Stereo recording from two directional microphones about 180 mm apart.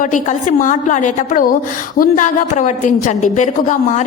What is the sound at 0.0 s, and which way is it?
A woman's voice, 45° left (ahead or behind).